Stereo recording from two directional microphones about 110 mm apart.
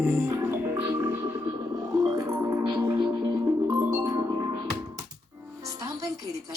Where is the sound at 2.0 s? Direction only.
30° right (ahead or behind).